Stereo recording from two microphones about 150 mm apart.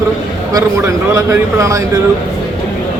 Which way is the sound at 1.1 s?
20° right (ahead or behind).